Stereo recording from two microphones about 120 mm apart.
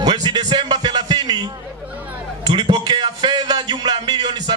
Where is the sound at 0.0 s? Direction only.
35° right (ahead or behind).